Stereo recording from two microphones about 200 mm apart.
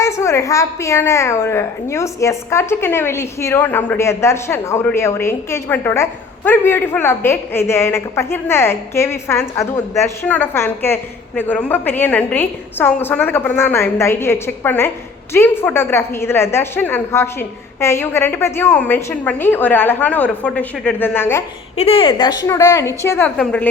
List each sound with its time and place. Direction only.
0.0 s a woman's voice: 15° left (ahead or behind)
21.8 s a woman's voice: 30° left (ahead or behind); by 23.6 s 5° left (ahead or behind)